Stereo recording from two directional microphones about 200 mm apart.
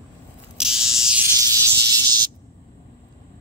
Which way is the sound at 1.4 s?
20° right (ahead or behind).